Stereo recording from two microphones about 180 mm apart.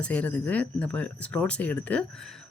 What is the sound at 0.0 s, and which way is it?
Speech, 5° left (ahead or behind).